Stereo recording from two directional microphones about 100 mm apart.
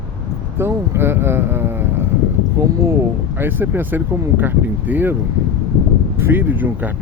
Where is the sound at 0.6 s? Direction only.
25° right (ahead or behind).